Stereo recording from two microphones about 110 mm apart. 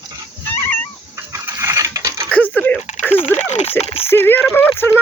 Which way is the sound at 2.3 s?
15° left (ahead or behind).